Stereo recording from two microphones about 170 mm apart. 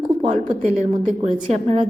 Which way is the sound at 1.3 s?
35° right (ahead or behind).